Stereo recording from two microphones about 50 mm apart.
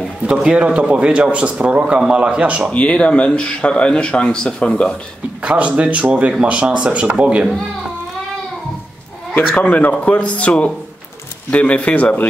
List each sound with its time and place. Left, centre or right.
0.5 s speech: right
2.7 s speech: left
5.4 s speech: right
9.3 s speech: left